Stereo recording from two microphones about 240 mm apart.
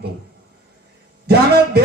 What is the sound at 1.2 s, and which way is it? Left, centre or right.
Speech, right.